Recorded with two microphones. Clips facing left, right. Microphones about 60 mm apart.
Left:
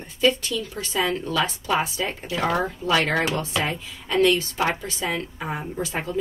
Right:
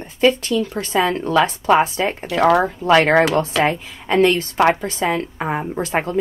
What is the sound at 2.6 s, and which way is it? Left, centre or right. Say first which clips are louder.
A woman's voice: right 8 dB; right.